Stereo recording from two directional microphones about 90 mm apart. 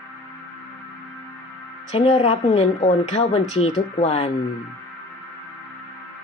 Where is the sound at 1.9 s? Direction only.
90° left.